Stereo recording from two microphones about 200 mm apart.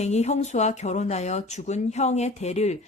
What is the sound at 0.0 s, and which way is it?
Speech, 35° left (ahead or behind).